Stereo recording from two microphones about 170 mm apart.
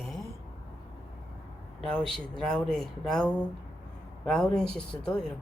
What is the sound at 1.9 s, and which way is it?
Speech, centre (ahead or behind).